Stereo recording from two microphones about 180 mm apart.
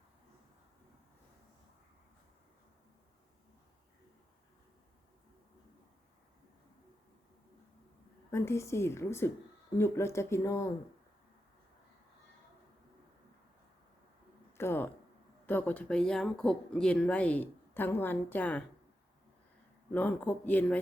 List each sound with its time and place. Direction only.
8.3 s speech: 15° left (ahead or behind)
14.6 s speech: 15° left (ahead or behind)
19.9 s speech: 10° left (ahead or behind)